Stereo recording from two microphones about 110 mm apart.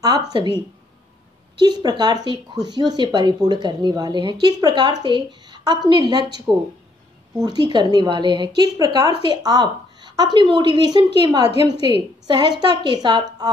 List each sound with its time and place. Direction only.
0.3 s a woman's voice: 45° right (ahead or behind)
1.6 s a woman's voice: 40° right (ahead or behind)
6.5 s speech: 20° right (ahead or behind)
7.3 s a woman's voice: 35° right (ahead or behind)
9.0 s speech: 60° left (ahead or behind)
9.3 s a woman's voice: 40° right (ahead or behind)
11.7 s speech: 60° left (ahead or behind)
12.3 s a woman's voice: 40° right (ahead or behind)